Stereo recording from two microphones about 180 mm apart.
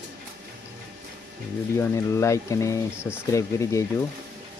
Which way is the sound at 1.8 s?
15° left (ahead or behind).